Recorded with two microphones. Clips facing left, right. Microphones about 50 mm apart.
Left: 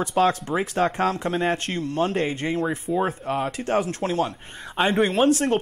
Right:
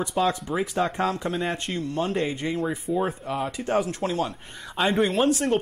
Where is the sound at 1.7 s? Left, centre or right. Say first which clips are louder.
Left 3 dB; left.